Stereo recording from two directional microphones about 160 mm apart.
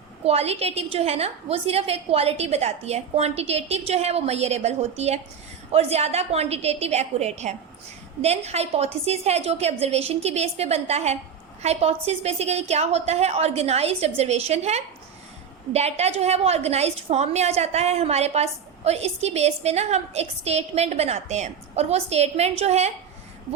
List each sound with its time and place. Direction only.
0.3 s a woman's voice: 40° right (ahead or behind)